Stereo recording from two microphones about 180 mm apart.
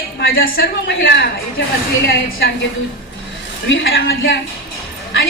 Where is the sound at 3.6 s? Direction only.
90° left.